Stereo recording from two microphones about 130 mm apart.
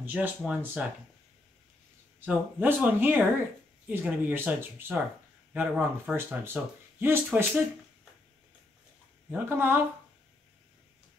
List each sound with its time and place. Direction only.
0.0 s speech: 15° right (ahead or behind)
2.2 s speech: 15° right (ahead or behind)
9.3 s speech: 15° right (ahead or behind)